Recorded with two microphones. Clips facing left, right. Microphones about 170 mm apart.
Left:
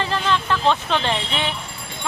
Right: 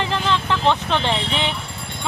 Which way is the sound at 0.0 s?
15° right (ahead or behind).